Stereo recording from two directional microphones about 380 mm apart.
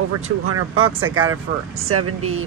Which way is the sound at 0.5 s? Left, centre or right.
Right.